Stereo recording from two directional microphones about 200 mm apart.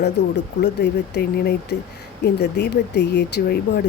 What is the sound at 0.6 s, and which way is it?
Speech, 55° left (ahead or behind).